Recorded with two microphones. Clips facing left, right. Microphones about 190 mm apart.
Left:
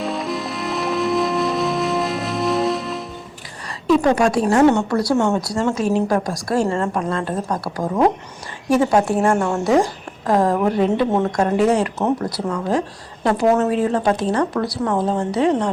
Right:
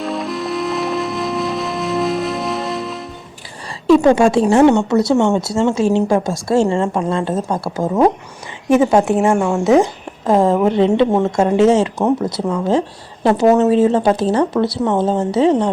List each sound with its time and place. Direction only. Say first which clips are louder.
0.0 s music: right 2 dB; centre (ahead or behind)
3.8 s a woman's voice: right 5 dB; 25° right (ahead or behind)
6.7 s speech: right 4 dB; 15° right (ahead or behind)
6.9 s speech: right 4 dB; 30° right (ahead or behind)
9.2 s speech: right 3 dB; 10° right (ahead or behind)
9.6 s a woman's voice: right 5 dB; 20° right (ahead or behind)